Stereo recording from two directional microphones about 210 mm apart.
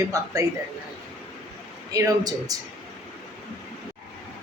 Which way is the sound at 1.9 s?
15° right (ahead or behind).